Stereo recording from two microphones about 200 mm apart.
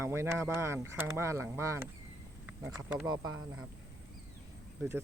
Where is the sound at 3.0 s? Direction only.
20° right (ahead or behind).